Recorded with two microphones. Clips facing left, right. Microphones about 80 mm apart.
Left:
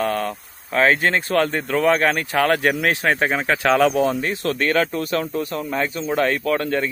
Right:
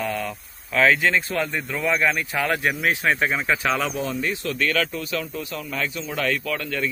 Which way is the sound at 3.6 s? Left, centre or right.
Left.